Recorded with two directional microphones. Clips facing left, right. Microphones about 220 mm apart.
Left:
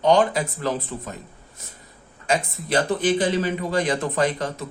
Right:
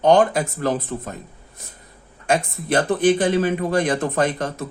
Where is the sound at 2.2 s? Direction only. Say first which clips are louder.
Right 3 dB; 55° right (ahead or behind).